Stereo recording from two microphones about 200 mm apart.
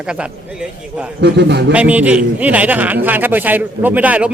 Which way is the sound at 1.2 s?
60° right (ahead or behind).